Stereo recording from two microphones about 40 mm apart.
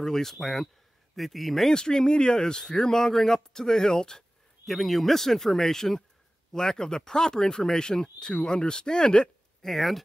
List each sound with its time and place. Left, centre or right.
0.0 s speech: centre
1.7 s speech: centre
4.6 s speech: centre; by 9.7 s left
9.7 s speech: centre